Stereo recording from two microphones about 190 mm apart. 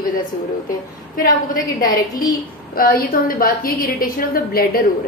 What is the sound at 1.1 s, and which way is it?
A woman's voice, 45° left (ahead or behind).